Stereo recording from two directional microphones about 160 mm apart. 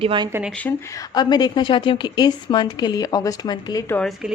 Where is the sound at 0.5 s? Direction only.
15° left (ahead or behind).